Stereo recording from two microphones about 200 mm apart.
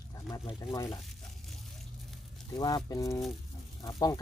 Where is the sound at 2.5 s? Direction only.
20° left (ahead or behind).